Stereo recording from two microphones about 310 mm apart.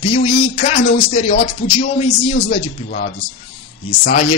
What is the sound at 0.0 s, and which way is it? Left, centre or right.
Speech, centre.